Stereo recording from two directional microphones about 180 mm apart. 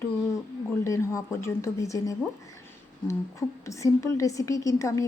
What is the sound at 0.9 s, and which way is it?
Speech, 15° left (ahead or behind).